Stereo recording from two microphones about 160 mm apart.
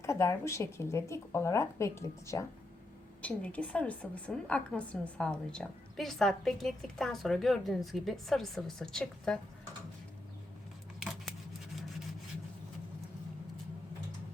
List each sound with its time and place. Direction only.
0.0 s speech: 15° left (ahead or behind)
3.2 s a woman's voice: 10° left (ahead or behind)